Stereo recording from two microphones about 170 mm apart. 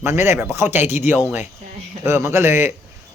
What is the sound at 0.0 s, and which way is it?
Speech, 15° right (ahead or behind).